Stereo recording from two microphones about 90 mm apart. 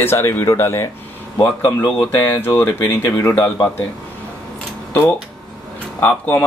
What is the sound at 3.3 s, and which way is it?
Speech, 20° left (ahead or behind).